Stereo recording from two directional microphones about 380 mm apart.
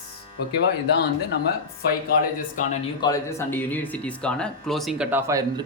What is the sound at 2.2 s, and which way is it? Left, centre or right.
Speech, left.